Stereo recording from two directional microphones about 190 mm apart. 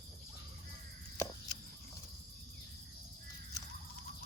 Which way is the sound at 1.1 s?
15° left (ahead or behind).